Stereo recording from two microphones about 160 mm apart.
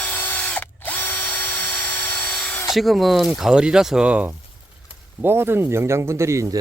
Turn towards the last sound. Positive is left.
turn(degrees=-20)  # may be behind; listen again after turning